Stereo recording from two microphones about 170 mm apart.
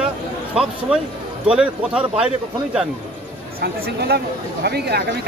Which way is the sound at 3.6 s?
70° right (ahead or behind).